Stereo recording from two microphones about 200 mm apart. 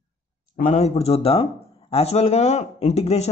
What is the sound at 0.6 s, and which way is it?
Speech, 35° left (ahead or behind).